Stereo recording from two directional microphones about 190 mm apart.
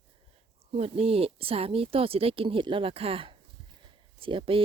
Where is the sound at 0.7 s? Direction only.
30° right (ahead or behind).